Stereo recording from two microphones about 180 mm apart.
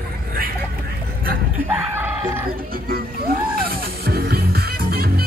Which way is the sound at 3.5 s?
55° right (ahead or behind).